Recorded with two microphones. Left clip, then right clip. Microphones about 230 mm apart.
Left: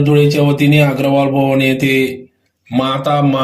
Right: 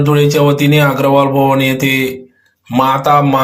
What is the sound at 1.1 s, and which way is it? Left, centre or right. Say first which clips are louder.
Mantra: right 2 dB; right.